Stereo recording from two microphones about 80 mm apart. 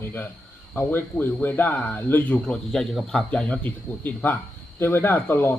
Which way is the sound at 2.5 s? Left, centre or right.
Centre.